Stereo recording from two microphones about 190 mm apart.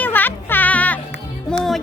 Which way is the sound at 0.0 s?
10° left (ahead or behind).